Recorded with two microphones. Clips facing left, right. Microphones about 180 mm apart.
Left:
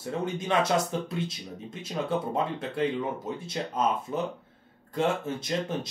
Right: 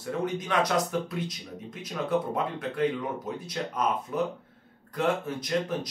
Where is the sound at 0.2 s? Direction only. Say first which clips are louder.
Left 1 dB; 25° left (ahead or behind).